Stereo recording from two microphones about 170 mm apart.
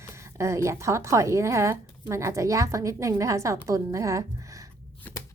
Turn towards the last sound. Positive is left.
turn(degrees=-20)  # may be behind; listen again after turning